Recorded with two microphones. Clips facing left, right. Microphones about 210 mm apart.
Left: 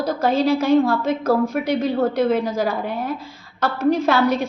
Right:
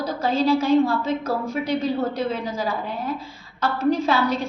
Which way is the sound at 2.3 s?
70° left (ahead or behind).